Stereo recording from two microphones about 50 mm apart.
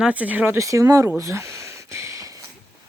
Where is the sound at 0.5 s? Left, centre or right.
Right.